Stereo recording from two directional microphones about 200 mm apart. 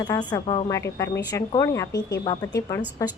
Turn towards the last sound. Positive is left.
turn(degrees=15)  # may be behind; listen again after turning